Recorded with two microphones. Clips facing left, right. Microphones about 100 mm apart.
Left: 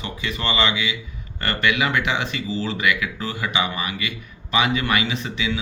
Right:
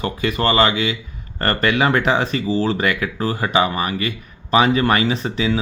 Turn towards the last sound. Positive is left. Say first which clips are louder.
# right 6 dB
turn(degrees=-35)  # may be behind; listen again after turning